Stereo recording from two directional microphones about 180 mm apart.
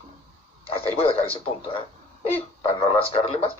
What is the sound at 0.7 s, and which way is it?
Speech, 30° left (ahead or behind).